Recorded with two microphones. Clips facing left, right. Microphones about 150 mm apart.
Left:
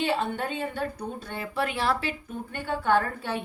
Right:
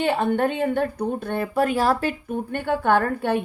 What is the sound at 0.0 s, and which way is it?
A woman's voice, 55° right (ahead or behind).